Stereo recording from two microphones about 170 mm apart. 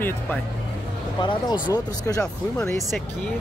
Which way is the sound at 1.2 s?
25° left (ahead or behind).